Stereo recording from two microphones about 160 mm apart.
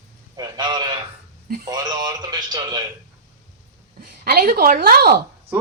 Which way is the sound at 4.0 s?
75° right (ahead or behind).